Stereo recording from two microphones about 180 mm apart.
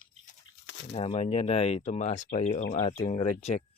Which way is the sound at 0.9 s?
30° left (ahead or behind).